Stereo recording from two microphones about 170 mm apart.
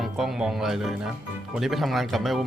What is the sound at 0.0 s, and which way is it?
A man's voice, centre (ahead or behind).